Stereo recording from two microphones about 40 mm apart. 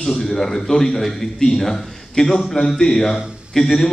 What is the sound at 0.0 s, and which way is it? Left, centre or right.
A man's voice, centre.